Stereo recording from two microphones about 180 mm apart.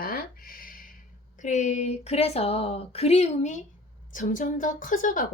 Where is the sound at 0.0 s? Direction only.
55° left (ahead or behind).